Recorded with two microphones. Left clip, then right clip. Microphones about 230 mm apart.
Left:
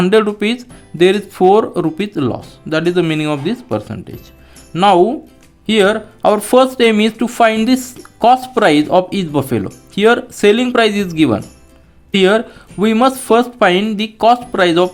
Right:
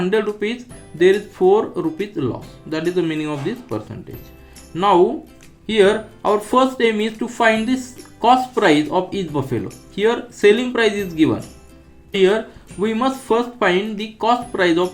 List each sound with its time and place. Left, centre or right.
0.0 s speech: left